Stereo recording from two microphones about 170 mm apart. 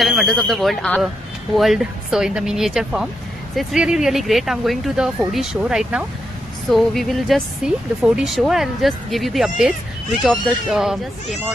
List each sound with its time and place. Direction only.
0.0 s speech: centre (ahead or behind)